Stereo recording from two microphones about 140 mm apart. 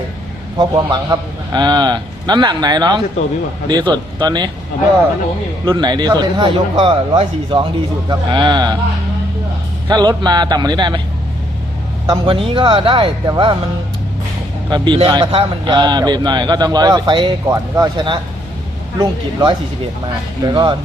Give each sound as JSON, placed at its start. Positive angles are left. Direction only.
{"t": 0.6, "sound": "a man's voice", "side_deg": -30}
{"t": 5.6, "sound": "a man's voice", "side_deg": -30}
{"t": 9.9, "sound": "a man's voice", "side_deg": -30}
{"t": 12.0, "sound": "a man's voice", "side_deg": -30}
{"t": 14.7, "sound": "a man's voice", "side_deg": -35}